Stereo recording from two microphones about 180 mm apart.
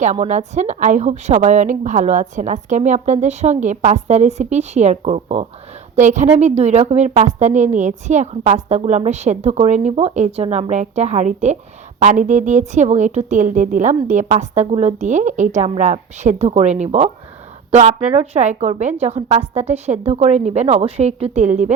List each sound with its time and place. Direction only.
0.0 s a woman's voice: 40° right (ahead or behind)